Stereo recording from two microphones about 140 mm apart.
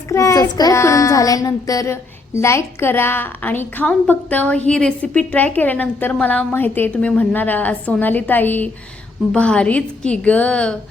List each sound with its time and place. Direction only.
0.1 s child singing: 20° left (ahead or behind)
4.7 s a woman's voice: 5° left (ahead or behind)